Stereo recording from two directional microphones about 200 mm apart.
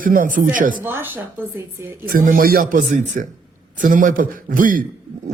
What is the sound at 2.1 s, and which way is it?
A man's voice, 45° right (ahead or behind).